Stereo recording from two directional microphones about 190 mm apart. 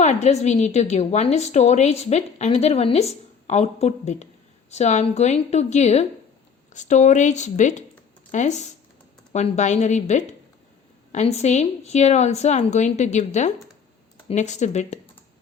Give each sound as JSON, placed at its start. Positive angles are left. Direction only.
{"t": 0.0, "sound": "a woman's voice", "side_deg": 35}